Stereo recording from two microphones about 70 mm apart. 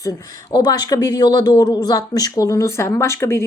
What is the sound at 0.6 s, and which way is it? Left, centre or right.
Speech, left.